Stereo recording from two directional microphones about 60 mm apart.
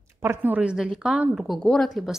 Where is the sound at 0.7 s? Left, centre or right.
Centre.